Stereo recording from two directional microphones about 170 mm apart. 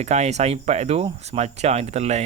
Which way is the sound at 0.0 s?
40° right (ahead or behind).